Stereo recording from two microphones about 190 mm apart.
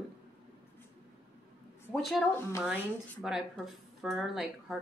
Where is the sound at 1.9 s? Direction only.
Centre (ahead or behind).